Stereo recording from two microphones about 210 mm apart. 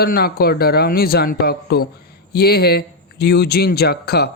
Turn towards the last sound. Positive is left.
turn(degrees=50)  # may be behind; listen again after turning